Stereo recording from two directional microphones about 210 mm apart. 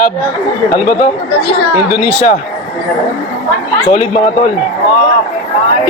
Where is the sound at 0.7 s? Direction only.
35° left (ahead or behind).